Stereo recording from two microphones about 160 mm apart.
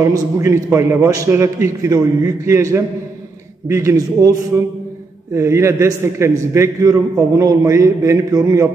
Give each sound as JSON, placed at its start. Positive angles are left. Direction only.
{"t": 0.0, "sound": "a man's voice", "side_deg": -20}
{"t": 5.3, "sound": "a man's voice", "side_deg": -15}